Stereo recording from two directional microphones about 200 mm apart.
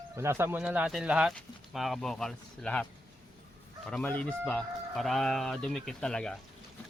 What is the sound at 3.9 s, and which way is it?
Speech, 5° left (ahead or behind).